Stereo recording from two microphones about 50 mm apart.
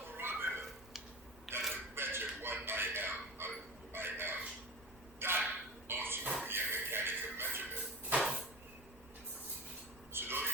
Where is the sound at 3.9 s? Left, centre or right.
Right.